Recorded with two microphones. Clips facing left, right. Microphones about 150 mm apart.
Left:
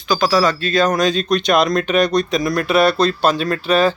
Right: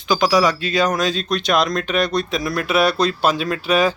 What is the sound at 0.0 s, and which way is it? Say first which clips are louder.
Speech: even; 20° right (ahead or behind).